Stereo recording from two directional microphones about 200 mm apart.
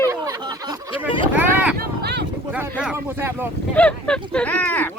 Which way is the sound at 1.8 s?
55° right (ahead or behind).